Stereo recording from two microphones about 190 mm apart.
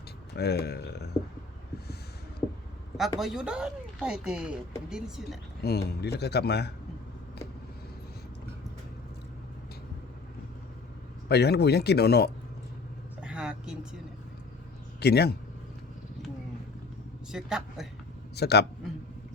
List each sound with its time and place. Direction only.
0.3 s speech: 60° left (ahead or behind)
2.4 s vehicle: 20° left (ahead or behind)
3.2 s speech: centre (ahead or behind)
5.6 s speech: 55° left (ahead or behind)
11.3 s speech: 60° left (ahead or behind)
13.2 s vehicle: 5° right (ahead or behind)
15.0 s speech: 60° left (ahead or behind)
17.3 s speech: 5° right (ahead or behind)
18.3 s speech: 60° left (ahead or behind)